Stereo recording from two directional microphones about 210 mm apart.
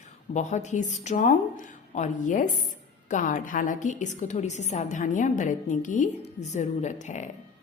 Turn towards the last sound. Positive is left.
turn(degrees=35)  # may be behind; listen again after turning